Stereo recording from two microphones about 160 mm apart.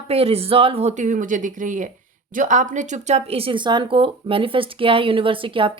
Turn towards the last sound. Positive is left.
turn(degrees=-35)  # may be behind; listen again after turning